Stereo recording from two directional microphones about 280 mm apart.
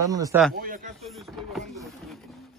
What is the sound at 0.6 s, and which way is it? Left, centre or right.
Speech, right.